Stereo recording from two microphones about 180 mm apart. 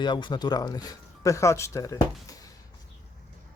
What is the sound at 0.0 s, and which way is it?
Speech, 25° left (ahead or behind).